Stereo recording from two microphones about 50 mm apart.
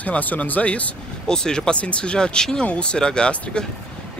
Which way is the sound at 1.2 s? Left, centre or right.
Centre.